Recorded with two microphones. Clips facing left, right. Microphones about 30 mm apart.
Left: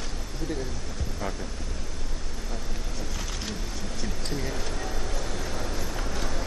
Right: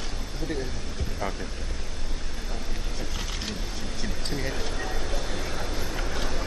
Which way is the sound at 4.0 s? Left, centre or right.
Centre.